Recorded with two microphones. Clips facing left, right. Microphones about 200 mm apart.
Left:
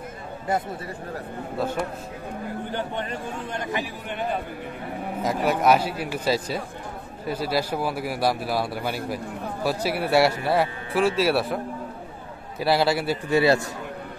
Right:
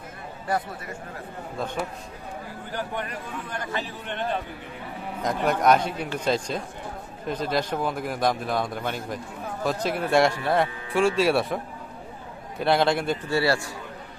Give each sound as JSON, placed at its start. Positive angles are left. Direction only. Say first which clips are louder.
{"t": 0.5, "sound": "a man's voice", "louder": "left 1 dB", "side_deg": 25}
{"t": 1.6, "sound": "a man's voice", "louder": "left 5 dB", "side_deg": 5}
{"t": 2.7, "sound": "a man's voice", "louder": "right 1 dB", "side_deg": 25}
{"t": 13.3, "sound": "a man's voice", "louder": "left 5 dB", "side_deg": 20}